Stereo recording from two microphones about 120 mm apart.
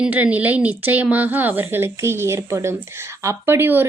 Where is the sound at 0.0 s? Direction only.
10° right (ahead or behind).